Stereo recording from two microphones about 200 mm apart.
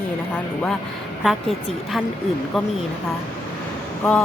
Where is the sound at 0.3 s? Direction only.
5° left (ahead or behind).